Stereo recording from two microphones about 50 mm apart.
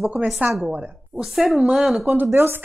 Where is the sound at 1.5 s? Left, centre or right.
Centre.